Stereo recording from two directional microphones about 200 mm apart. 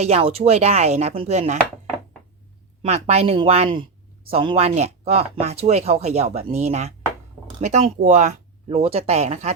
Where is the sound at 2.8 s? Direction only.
30° right (ahead or behind).